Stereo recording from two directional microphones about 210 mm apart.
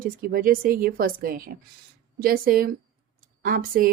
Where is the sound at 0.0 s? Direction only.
45° right (ahead or behind).